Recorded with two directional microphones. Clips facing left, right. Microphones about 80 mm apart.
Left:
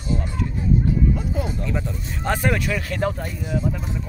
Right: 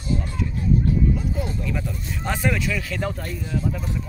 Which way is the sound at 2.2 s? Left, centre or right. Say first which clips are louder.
Left 2 dB; left.